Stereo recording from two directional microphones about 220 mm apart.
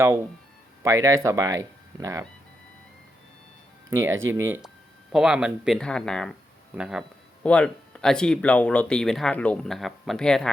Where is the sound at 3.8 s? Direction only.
10° right (ahead or behind).